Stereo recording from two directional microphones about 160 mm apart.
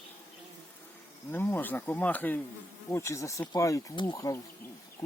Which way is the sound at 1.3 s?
15° left (ahead or behind).